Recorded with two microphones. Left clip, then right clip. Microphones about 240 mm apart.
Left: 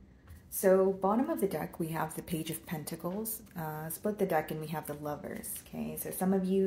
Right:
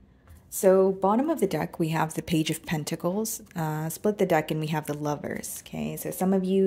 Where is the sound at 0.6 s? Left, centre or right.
Right.